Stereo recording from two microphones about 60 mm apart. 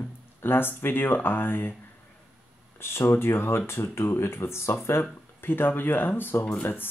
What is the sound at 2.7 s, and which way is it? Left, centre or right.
Speech, left.